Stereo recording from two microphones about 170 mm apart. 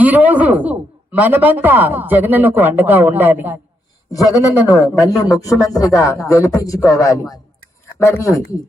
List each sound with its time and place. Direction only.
0.0 s a man's voice: 10° right (ahead or behind)
4.7 s a man's voice: 20° left (ahead or behind)